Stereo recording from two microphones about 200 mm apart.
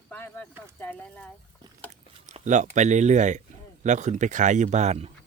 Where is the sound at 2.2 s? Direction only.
40° right (ahead or behind).